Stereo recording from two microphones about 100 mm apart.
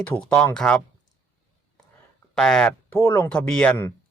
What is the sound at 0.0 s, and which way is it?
Speech, 15° left (ahead or behind).